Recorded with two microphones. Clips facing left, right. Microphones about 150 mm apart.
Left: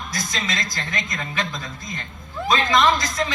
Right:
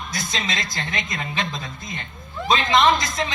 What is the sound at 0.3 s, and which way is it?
A woman's voice, 25° right (ahead or behind).